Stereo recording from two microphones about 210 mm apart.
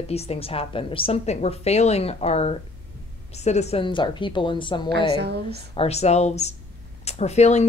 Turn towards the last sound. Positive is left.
turn(degrees=30)  # may be behind; listen again after turning